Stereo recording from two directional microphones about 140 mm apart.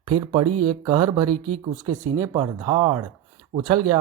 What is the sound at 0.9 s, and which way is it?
Speech, 25° right (ahead or behind).